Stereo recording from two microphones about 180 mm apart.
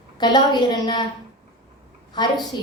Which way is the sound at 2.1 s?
25° left (ahead or behind).